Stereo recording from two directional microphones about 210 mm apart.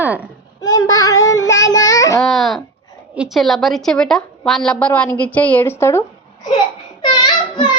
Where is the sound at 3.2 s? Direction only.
Centre (ahead or behind).